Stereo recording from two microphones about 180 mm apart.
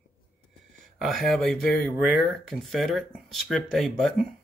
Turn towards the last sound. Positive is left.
turn(degrees=5)  # may be behind; listen again after turning